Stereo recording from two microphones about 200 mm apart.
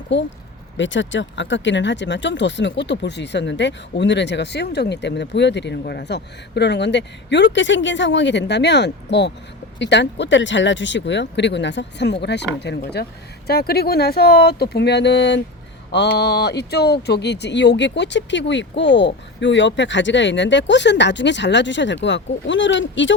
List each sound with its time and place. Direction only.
0.1 s speech: 60° left (ahead or behind)